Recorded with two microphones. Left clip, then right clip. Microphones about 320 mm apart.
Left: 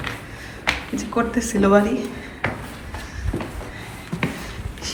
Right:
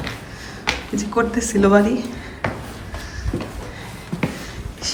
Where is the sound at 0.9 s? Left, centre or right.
Centre.